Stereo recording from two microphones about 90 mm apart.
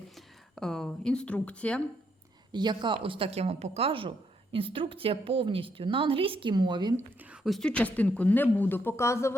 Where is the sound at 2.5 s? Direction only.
55° right (ahead or behind); by 6.5 s 90° right.